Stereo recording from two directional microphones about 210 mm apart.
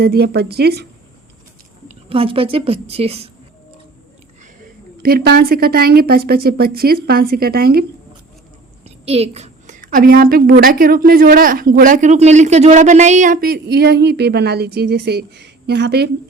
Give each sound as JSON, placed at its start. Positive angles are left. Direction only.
{"t": 0.0, "sound": "a woman's voice", "side_deg": -50}
{"t": 2.0, "sound": "a woman's voice", "side_deg": -25}
{"t": 5.0, "sound": "a woman's voice", "side_deg": -45}
{"t": 9.0, "sound": "a woman's voice", "side_deg": -30}